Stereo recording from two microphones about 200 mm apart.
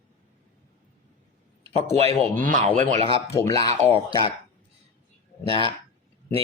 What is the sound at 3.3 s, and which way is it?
Speech, 15° left (ahead or behind).